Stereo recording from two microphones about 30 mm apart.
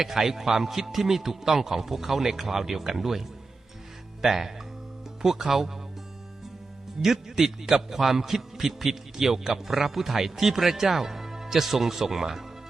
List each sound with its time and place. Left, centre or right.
0.0 s a man's voice: centre
7.0 s a man's voice: centre